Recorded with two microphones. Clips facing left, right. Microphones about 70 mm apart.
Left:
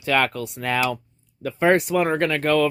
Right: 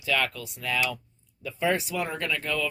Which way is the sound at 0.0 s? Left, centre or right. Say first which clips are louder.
Left 7 dB; left.